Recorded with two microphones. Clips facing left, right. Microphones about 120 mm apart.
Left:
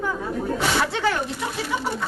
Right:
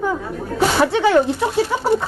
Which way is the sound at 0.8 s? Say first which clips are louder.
Right 7 dB; 20° right (ahead or behind).